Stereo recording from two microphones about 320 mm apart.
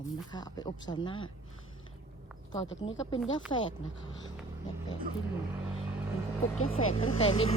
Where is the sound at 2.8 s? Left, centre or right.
Centre.